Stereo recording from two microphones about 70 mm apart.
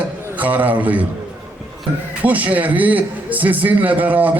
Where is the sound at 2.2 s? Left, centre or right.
Right.